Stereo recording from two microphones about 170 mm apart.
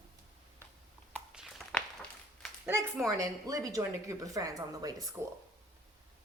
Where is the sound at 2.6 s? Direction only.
15° right (ahead or behind).